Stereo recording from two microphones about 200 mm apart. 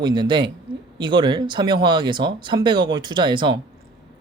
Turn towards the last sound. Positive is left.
turn(degrees=-20)  # may be behind; listen again after turning